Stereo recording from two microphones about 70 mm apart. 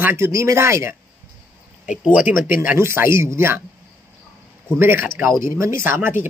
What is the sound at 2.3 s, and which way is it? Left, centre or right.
A man's voice, right.